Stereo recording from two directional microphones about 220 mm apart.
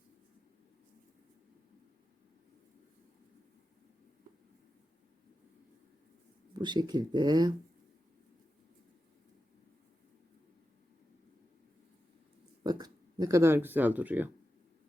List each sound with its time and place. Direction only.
6.6 s speech: 20° right (ahead or behind)
12.6 s speech: 20° right (ahead or behind)